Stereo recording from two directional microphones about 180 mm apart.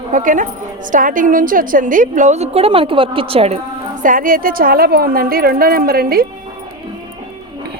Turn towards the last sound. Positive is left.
turn(degrees=-55)  # may be behind; listen again after turning